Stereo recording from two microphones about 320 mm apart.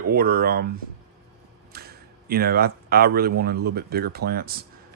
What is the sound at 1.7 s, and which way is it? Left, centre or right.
Speech, right.